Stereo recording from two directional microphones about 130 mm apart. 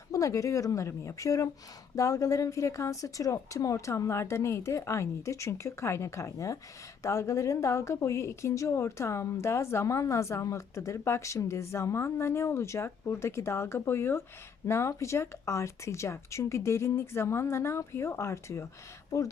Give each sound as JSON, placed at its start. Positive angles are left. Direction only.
{"t": 0.1, "sound": "a woman's voice", "side_deg": 25}